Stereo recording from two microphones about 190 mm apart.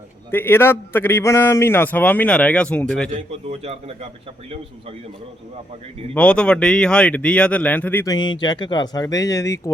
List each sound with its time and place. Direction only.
0.3 s a man's voice: 10° left (ahead or behind)
3.1 s a man's voice: 35° right (ahead or behind)
6.1 s a man's voice: 5° left (ahead or behind)
8.1 s speech: 25° left (ahead or behind)